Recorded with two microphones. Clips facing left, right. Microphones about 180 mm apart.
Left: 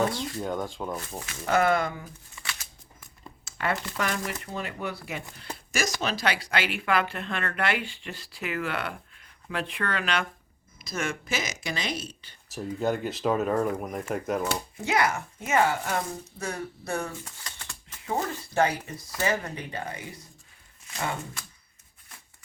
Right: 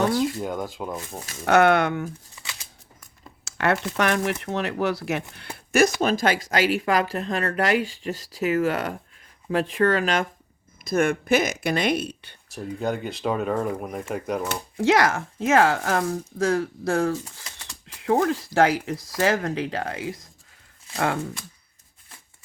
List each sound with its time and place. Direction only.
0.4 s speech: 5° right (ahead or behind)
1.5 s speech: 75° right (ahead or behind)
2.4 s a sound: 20° right (ahead or behind)
3.4 s speech: 75° right (ahead or behind)
5.5 s speech: 60° right (ahead or behind); by 10.2 s 40° right (ahead or behind)
10.8 s speech: 55° right (ahead or behind)
12.5 s speech: centre (ahead or behind)
14.8 s speech: 90° right
18.0 s speech: 75° right (ahead or behind); by 20.2 s 90° right
20.9 s speech: 75° right (ahead or behind)